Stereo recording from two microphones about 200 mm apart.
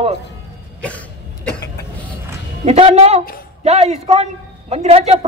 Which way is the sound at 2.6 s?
30° right (ahead or behind).